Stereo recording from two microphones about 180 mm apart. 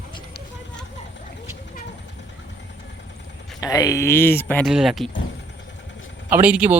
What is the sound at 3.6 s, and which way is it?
Speech, 20° left (ahead or behind).